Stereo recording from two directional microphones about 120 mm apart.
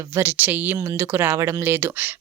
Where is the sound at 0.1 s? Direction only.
20° right (ahead or behind).